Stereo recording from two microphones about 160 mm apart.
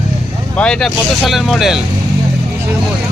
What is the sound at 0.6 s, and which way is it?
Speech, 5° left (ahead or behind).